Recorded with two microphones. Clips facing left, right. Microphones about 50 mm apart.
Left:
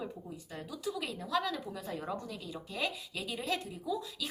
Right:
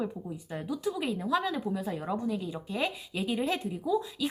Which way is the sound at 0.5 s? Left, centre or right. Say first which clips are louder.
Right 6 dB; right.